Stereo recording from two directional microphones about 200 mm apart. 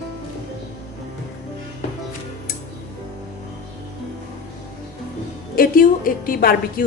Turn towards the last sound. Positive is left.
turn(degrees=45)  # may be behind; listen again after turning